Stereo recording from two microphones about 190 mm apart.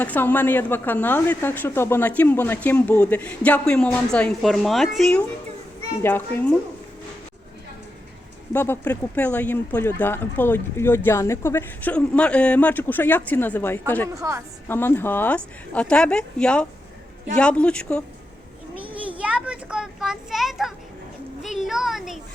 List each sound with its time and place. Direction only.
0.0 s speech: 10° left (ahead or behind)
8.5 s speech: 10° left (ahead or behind)
14.2 s a woman's voice: 15° right (ahead or behind)
14.7 s speech: 10° left (ahead or behind)
19.2 s a child's voice: 5° right (ahead or behind)